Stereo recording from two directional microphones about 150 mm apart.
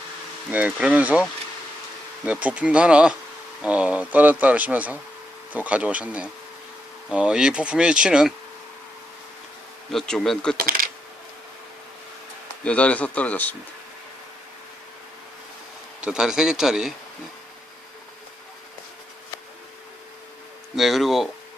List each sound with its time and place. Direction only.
0.5 s speech: 10° right (ahead or behind)
9.9 s speech: 5° left (ahead or behind)
10.6 s a sound: 75° right (ahead or behind)
12.6 s speech: 10° left (ahead or behind)
16.0 s speech: 5° right (ahead or behind)
20.7 s speech: centre (ahead or behind)